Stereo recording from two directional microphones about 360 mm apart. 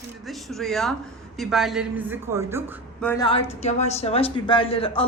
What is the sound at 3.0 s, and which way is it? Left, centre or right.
Speech, centre.